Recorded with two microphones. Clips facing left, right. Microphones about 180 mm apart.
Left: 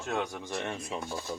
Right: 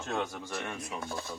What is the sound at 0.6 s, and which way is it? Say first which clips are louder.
Speech: left 3 dB; 25° left (ahead or behind).